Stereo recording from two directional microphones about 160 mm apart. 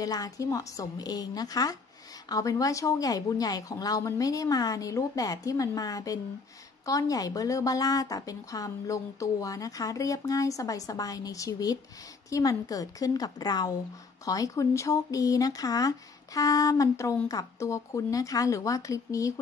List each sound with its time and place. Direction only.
0.0 s speech: 20° left (ahead or behind)